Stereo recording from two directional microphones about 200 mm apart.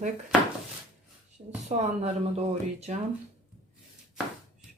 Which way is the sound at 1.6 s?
35° right (ahead or behind).